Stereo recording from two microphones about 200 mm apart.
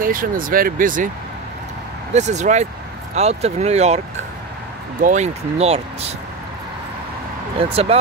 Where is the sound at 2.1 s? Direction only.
35° right (ahead or behind).